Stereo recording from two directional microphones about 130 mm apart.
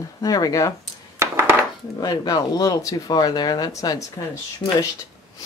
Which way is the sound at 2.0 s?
30° left (ahead or behind).